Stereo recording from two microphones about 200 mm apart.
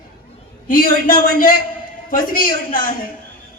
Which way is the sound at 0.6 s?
45° left (ahead or behind).